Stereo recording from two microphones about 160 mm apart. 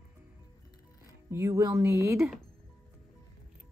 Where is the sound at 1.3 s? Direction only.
20° right (ahead or behind).